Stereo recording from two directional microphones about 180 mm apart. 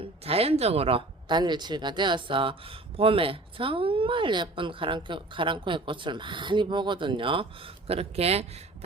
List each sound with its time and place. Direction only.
0.3 s speech: 35° right (ahead or behind)